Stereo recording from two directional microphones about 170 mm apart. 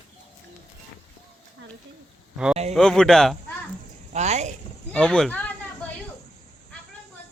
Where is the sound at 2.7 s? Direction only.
5° left (ahead or behind).